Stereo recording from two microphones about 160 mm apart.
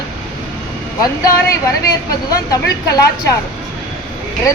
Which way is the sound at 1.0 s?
20° left (ahead or behind).